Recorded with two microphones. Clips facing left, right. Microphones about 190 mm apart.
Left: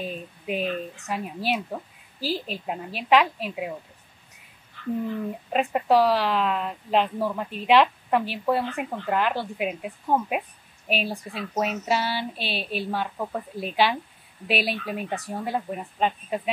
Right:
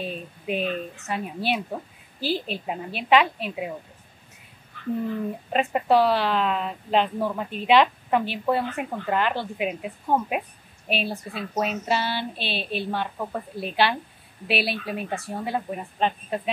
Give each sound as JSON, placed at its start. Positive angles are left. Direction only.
{"t": 0.0, "sound": "speech", "side_deg": 5}
{"t": 5.5, "sound": "speech", "side_deg": 0}
{"t": 14.5, "sound": "speech", "side_deg": 45}
{"t": 14.9, "sound": "speech", "side_deg": -5}